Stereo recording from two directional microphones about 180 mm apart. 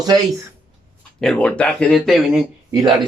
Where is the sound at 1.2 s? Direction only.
5° left (ahead or behind).